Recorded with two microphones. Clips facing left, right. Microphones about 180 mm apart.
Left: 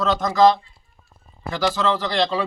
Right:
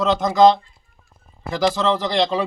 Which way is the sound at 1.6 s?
20° right (ahead or behind).